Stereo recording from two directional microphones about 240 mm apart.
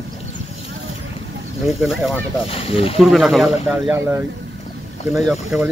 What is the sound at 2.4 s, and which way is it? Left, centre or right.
Speech, left.